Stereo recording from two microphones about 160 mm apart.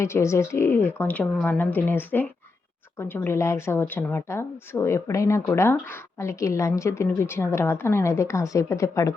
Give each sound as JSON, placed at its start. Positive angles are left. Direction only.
{"t": 0.0, "sound": "speech", "side_deg": 15}